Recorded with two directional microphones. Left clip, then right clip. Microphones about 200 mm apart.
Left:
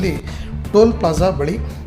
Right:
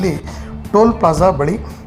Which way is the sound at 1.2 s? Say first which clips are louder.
Right 4 dB; 5° left (ahead or behind).